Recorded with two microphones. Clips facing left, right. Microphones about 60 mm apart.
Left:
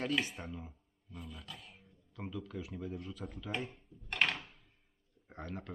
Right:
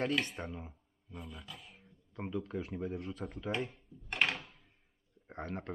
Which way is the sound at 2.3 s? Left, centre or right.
Right.